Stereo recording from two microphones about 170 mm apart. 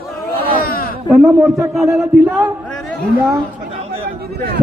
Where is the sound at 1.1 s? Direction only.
Centre (ahead or behind).